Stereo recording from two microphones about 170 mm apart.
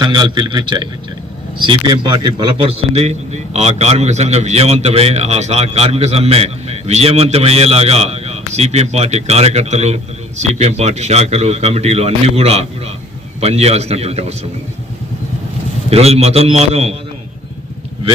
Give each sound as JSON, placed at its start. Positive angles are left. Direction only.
{"t": 0.0, "sound": "a man's voice", "side_deg": -25}
{"t": 15.9, "sound": "a man's voice", "side_deg": -35}